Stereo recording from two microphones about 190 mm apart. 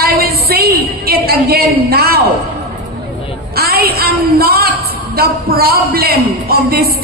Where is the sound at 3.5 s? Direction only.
55° right (ahead or behind).